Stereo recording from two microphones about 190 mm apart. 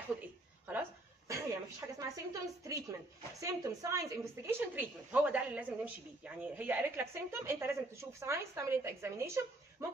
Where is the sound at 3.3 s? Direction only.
15° right (ahead or behind).